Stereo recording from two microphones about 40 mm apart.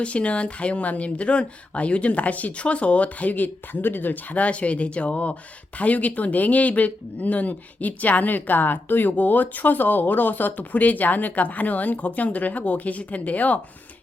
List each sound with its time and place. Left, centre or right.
0.0 s speech: left